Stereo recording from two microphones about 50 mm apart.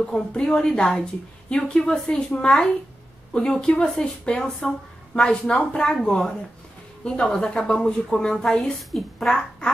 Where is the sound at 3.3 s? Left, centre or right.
Centre.